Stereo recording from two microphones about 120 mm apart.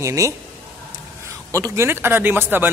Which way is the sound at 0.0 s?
25° right (ahead or behind).